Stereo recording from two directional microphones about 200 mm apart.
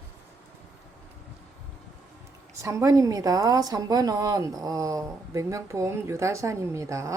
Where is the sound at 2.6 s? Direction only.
15° right (ahead or behind).